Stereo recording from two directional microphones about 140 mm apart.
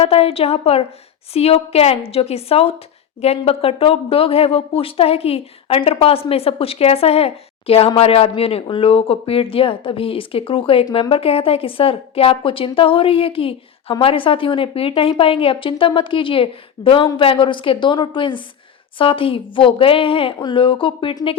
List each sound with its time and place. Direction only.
0.0 s a woman's voice: 45° left (ahead or behind)